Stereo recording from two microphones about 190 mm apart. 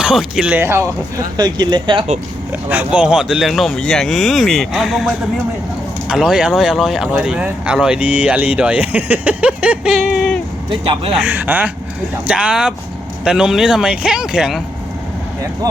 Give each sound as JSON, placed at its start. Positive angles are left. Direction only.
{"t": 0.0, "sound": "speech", "side_deg": -5}
{"t": 2.5, "sound": "speech", "side_deg": -10}
{"t": 10.7, "sound": "speech", "side_deg": -30}
{"t": 11.2, "sound": "speech", "side_deg": -10}